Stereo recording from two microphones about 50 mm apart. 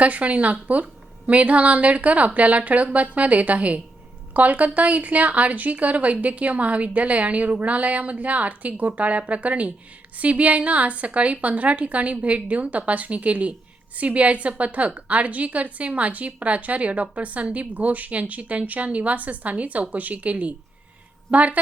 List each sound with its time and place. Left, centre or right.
0.0 s a woman's voice: right